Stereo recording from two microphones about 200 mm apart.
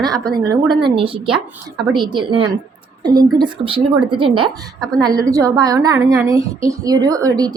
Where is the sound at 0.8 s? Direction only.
25° right (ahead or behind).